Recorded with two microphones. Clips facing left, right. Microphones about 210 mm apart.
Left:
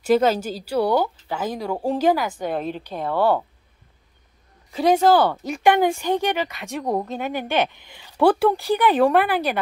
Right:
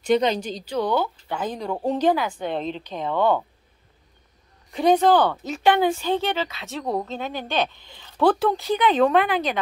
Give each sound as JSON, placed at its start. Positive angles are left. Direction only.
{"t": 0.0, "sound": "speech", "side_deg": 5}
{"t": 4.7, "sound": "speech", "side_deg": 5}